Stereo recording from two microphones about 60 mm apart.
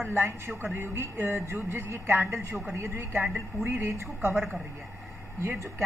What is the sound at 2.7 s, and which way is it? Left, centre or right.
A woman's voice, right.